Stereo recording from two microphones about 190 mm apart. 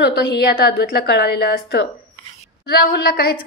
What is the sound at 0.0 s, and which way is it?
A woman's voice, 60° left (ahead or behind).